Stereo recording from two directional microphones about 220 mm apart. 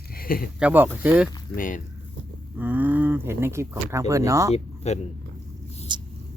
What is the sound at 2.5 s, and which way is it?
Speech, 5° right (ahead or behind).